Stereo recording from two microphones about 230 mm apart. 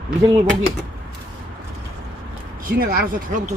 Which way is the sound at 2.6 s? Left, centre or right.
Right.